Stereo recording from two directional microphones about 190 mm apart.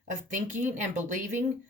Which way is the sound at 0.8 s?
40° right (ahead or behind).